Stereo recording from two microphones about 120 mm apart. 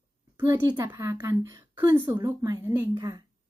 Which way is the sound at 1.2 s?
25° right (ahead or behind).